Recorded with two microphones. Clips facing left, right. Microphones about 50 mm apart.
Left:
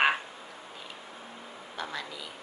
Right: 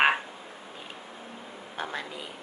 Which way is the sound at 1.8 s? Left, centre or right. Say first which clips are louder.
Right 2 dB; right.